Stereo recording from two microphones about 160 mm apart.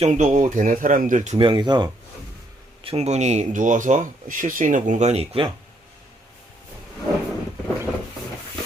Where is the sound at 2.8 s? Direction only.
40° right (ahead or behind).